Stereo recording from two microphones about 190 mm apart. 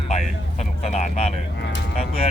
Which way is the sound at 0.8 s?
35° left (ahead or behind).